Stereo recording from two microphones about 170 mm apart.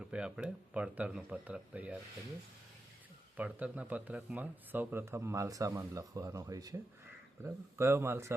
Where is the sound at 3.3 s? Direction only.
10° right (ahead or behind).